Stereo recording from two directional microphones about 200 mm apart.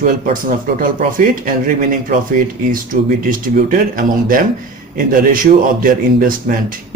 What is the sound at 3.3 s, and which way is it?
Speech, 45° right (ahead or behind).